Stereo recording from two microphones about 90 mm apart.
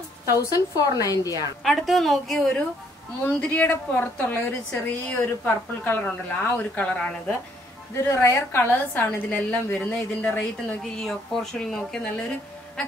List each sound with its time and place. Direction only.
0.4 s a woman's voice: 45° left (ahead or behind)
1.6 s speech: centre (ahead or behind)
3.3 s a woman's voice: 15° left (ahead or behind)
7.9 s a woman's voice: 30° left (ahead or behind)
10.8 s speech: 5° left (ahead or behind)